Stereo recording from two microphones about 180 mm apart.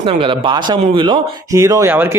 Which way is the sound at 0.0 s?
30° right (ahead or behind).